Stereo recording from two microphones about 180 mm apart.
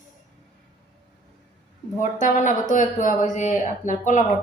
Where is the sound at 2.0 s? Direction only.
45° left (ahead or behind).